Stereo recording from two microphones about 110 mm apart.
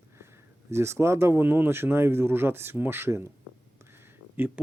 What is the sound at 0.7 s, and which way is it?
Speech, 25° right (ahead or behind).